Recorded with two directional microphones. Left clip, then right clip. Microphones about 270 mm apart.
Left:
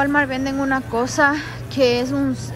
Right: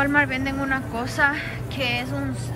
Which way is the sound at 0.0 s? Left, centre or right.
Centre.